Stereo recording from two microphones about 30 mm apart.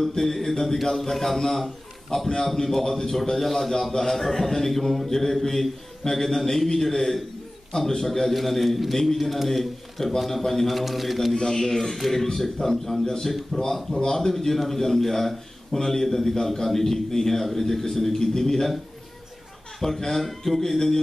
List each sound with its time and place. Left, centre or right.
0.2 s a man's voice: centre
11.3 s a man's voice: left
19.8 s a man's voice: centre